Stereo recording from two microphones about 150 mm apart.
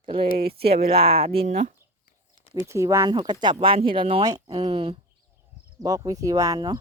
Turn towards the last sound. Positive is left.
turn(degrees=-25)  # may be behind; listen again after turning